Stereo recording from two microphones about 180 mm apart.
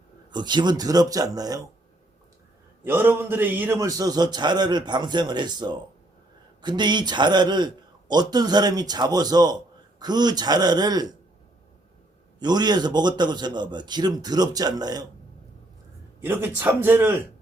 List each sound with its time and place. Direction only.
0.3 s a man's voice: 25° right (ahead or behind)
2.8 s a man's voice: 10° right (ahead or behind)
12.4 s a man's voice: 25° right (ahead or behind)
16.2 s speech: 10° right (ahead or behind)